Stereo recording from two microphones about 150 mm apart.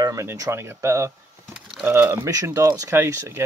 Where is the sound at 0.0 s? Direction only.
20° right (ahead or behind).